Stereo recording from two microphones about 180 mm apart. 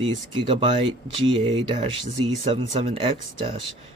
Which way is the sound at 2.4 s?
30° right (ahead or behind).